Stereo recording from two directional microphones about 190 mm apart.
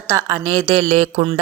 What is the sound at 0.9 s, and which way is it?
Music, 35° right (ahead or behind).